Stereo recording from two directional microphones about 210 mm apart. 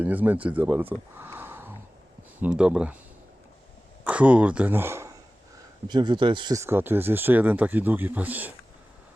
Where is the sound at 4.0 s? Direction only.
5° right (ahead or behind).